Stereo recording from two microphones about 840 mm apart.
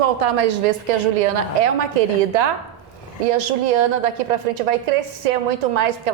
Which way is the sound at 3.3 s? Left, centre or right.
Right.